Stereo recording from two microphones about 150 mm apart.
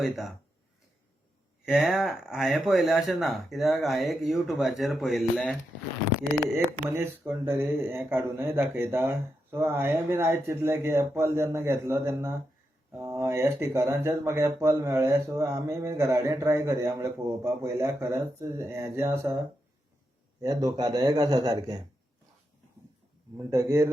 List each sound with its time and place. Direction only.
0.0 s speech: centre (ahead or behind)
1.6 s speech: centre (ahead or behind)
6.8 s speech: 15° right (ahead or behind)
20.4 s speech: 25° right (ahead or behind)
23.4 s speech: 20° right (ahead or behind)